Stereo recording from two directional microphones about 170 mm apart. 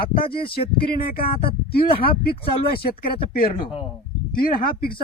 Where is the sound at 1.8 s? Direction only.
30° left (ahead or behind).